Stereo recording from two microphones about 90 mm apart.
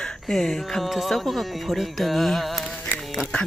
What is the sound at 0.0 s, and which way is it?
Speech, 5° left (ahead or behind).